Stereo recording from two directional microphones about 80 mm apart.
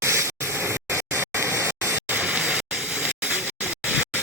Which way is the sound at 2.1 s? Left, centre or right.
Centre.